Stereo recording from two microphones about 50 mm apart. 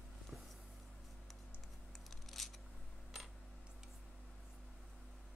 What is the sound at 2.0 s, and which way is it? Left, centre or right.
Scissors, centre.